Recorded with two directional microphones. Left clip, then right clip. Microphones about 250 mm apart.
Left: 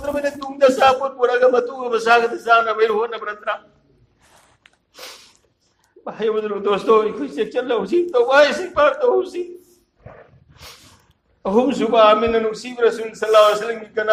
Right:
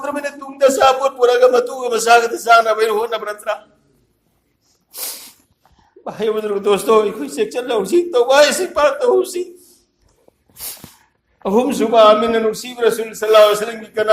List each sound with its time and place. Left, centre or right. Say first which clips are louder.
0.0 s a man's voice: left 1 dB; right
4.9 s snort: right 6 dB; right
6.1 s a man's voice: right 2 dB; right
11.4 s a man's voice: right 2 dB; right